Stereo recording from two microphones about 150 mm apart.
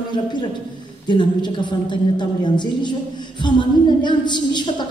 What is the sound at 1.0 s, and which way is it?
A man's voice, 30° left (ahead or behind).